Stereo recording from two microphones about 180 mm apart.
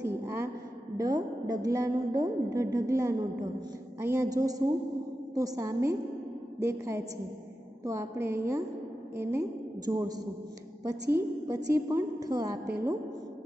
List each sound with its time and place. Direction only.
0.0 s a sound: 15° right (ahead or behind)
0.9 s a woman's voice: 20° right (ahead or behind)
11.4 s a woman's voice: 20° right (ahead or behind)